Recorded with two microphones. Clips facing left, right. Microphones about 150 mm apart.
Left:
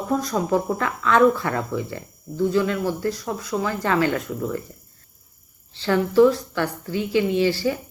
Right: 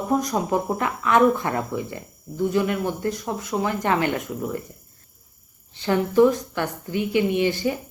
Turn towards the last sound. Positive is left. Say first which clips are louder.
# left 1 dB
turn(degrees=-20)  # may be behind; listen again after turning